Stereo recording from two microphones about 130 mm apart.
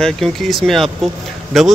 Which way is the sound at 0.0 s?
Centre (ahead or behind).